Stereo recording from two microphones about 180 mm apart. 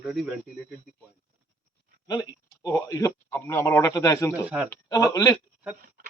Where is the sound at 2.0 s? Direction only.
20° left (ahead or behind).